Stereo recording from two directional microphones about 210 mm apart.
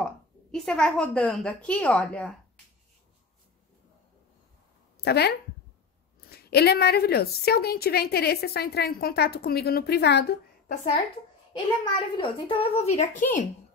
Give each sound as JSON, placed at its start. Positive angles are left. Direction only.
{"t": 0.0, "sound": "a woman's voice", "side_deg": 5}
{"t": 5.0, "sound": "speech", "side_deg": 50}
{"t": 6.3, "sound": "a woman's voice", "side_deg": 50}
{"t": 11.5, "sound": "a child's voice", "side_deg": 20}